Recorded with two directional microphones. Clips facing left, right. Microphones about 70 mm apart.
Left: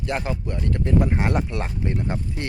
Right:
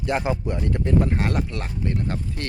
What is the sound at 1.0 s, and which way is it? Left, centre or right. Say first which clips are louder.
Speech: left 1 dB; centre.